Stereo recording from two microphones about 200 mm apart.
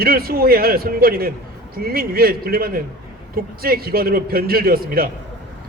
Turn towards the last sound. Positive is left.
turn(degrees=-50)  # may be behind; listen again after turning